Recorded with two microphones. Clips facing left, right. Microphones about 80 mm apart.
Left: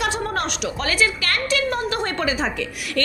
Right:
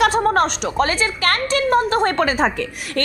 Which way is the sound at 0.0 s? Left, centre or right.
Right.